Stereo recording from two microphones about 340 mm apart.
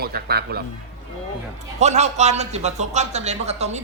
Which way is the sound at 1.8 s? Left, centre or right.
Centre.